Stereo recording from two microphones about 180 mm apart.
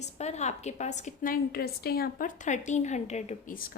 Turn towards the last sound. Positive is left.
turn(degrees=50)  # may be behind; listen again after turning